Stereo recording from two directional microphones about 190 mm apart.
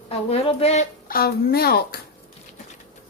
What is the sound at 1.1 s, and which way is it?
Speech, 55° left (ahead or behind).